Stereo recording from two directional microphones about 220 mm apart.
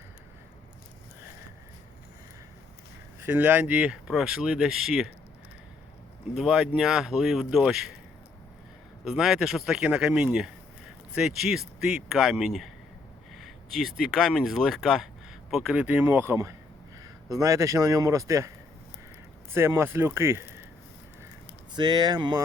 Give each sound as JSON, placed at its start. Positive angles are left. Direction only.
{"t": 3.2, "sound": "speech", "side_deg": -10}
{"t": 6.3, "sound": "speech", "side_deg": -5}
{"t": 9.0, "sound": "speech", "side_deg": 0}
{"t": 19.5, "sound": "speech", "side_deg": -10}
{"t": 21.7, "sound": "speech", "side_deg": -20}